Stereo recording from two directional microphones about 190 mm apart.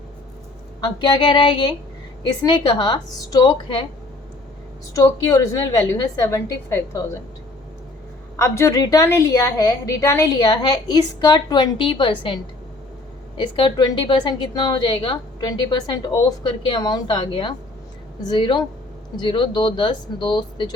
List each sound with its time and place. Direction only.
0.8 s a woman's voice: 20° left (ahead or behind)
4.9 s a woman's voice: 15° left (ahead or behind)
8.4 s a woman's voice: 15° left (ahead or behind)